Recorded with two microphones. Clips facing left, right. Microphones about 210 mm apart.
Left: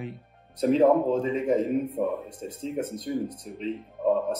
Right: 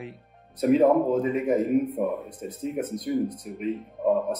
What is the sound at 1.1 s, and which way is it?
Speech, 30° left (ahead or behind).